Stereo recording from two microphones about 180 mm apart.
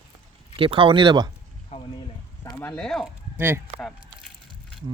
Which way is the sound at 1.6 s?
30° left (ahead or behind).